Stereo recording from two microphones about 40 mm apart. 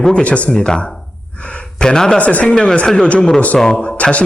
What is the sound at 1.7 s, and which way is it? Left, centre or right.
Speech, centre.